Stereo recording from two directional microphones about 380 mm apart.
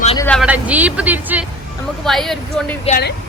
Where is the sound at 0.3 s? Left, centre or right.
Centre.